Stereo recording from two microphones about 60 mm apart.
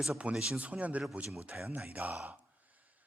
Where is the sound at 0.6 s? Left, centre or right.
Right.